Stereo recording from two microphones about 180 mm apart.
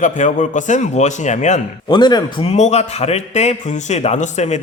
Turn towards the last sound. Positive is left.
turn(degrees=40)  # may be behind; listen again after turning